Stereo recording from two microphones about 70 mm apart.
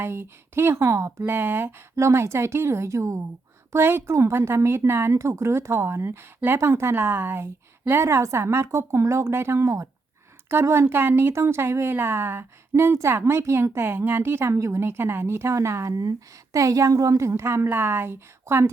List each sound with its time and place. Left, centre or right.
0.0 s speech: right
1.2 s speech: right
2.0 s speech: right
3.7 s speech: right